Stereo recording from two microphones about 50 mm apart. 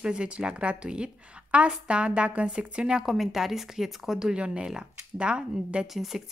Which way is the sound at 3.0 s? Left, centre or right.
Centre.